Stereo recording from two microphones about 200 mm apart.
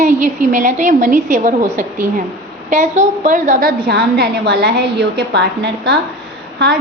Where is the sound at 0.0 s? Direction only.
40° right (ahead or behind).